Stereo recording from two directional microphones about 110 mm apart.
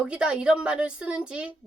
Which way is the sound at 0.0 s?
10° right (ahead or behind).